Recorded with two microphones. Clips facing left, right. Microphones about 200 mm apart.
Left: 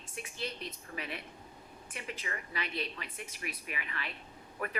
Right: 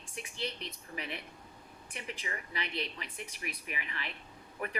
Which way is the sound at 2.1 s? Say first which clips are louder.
Even; 15° right (ahead or behind).